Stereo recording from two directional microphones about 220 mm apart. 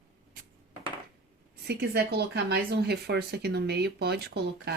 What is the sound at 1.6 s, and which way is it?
Speech, 45° right (ahead or behind).